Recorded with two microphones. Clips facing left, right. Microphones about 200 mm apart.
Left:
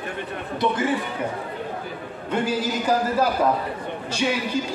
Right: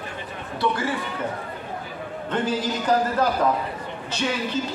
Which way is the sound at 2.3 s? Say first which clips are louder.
Left 1 dB; 10° left (ahead or behind).